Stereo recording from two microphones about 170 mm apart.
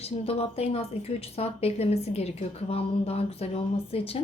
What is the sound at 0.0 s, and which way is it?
A woman's voice, 35° left (ahead or behind).